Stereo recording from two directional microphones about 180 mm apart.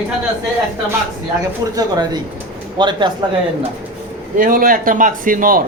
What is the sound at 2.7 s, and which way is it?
Speech, 25° right (ahead or behind).